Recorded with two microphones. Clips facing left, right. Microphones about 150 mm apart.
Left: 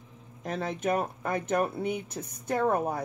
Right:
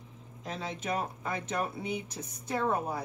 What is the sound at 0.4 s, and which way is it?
Speech, 55° left (ahead or behind).